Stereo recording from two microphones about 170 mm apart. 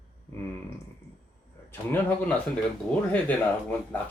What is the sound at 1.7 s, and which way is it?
Speech, 10° left (ahead or behind).